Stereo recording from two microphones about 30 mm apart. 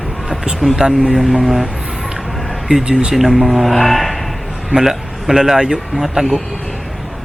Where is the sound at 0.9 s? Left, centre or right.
Centre.